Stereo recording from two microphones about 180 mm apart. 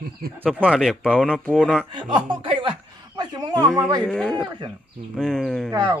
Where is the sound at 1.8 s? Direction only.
25° right (ahead or behind).